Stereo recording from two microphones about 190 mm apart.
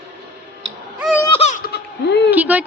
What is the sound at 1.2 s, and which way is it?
Baby laughter, 30° left (ahead or behind).